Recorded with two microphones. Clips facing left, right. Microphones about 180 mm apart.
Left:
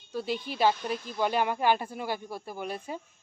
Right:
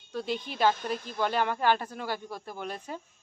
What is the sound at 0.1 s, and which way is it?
Speech, 5° left (ahead or behind).